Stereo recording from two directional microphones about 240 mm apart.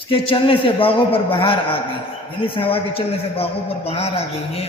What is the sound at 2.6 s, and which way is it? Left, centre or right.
A man's voice, left.